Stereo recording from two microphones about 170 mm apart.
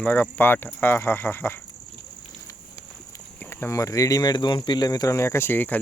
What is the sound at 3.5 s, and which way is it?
Speech, 15° left (ahead or behind).